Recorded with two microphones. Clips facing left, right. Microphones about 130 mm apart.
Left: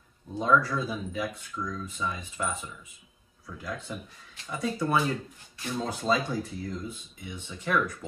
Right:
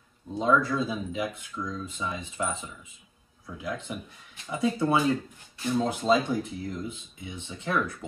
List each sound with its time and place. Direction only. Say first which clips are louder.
0.3 s speech: right 1 dB; 20° right (ahead or behind)